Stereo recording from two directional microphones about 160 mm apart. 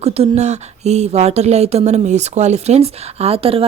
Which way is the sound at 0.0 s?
40° right (ahead or behind).